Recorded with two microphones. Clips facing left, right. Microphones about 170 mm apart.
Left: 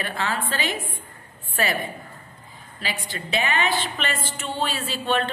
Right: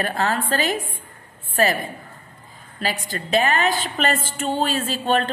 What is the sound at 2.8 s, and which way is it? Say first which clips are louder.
A woman's voice: right 5 dB; 45° right (ahead or behind).